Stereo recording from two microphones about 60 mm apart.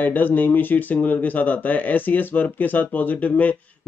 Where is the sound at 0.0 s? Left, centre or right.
Left.